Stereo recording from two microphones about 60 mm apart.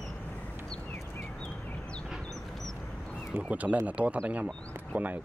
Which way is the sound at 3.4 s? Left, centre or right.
Right.